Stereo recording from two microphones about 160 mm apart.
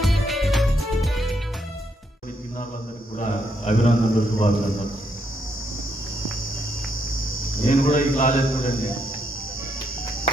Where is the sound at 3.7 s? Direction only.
40° left (ahead or behind).